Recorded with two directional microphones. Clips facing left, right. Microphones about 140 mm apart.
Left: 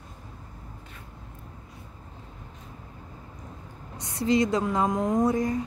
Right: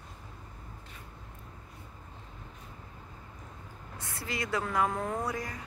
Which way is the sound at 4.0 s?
20° left (ahead or behind).